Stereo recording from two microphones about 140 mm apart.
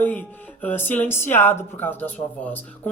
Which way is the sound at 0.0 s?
10° left (ahead or behind).